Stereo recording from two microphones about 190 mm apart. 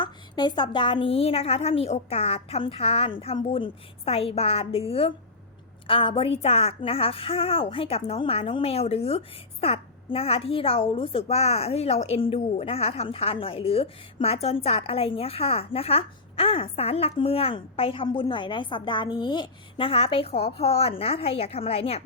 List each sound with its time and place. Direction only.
0.0 s a woman's voice: 25° left (ahead or behind)